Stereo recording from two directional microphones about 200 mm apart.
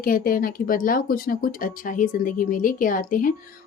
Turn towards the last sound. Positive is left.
turn(degrees=45)  # may be behind; listen again after turning